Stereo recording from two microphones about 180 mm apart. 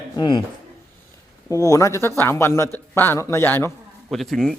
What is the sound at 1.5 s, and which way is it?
Speech, 20° left (ahead or behind).